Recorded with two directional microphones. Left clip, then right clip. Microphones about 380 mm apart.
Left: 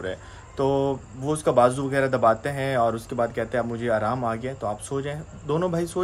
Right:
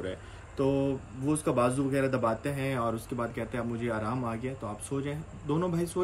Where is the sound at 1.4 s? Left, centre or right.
Centre.